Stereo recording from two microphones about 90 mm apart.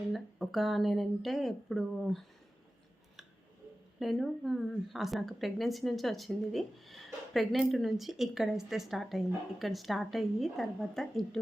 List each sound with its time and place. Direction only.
0.1 s speech: centre (ahead or behind)
4.0 s speech: centre (ahead or behind)